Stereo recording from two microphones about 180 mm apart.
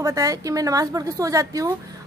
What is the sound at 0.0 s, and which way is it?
A woman's voice, 20° right (ahead or behind).